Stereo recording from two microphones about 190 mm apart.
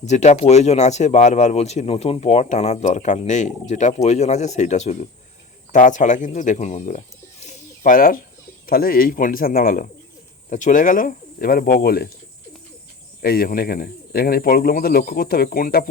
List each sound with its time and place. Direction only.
0.0 s speech: 40° left (ahead or behind)
7.5 s bird: 45° left (ahead or behind)
8.6 s speech: 50° left (ahead or behind)
13.2 s speech: 50° left (ahead or behind)